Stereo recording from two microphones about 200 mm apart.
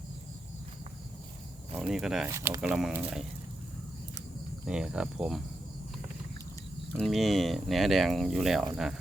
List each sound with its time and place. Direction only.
1.7 s speech: centre (ahead or behind)
2.3 s speech: 15° right (ahead or behind)
2.6 s speech: centre (ahead or behind)
4.6 s speech: 5° right (ahead or behind)
6.9 s speech: centre (ahead or behind)